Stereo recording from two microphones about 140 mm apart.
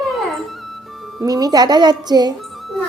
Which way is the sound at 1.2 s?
25° right (ahead or behind).